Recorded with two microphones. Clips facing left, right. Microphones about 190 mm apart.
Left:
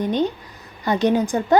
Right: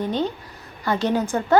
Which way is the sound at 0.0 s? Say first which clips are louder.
Left 3 dB; 20° left (ahead or behind).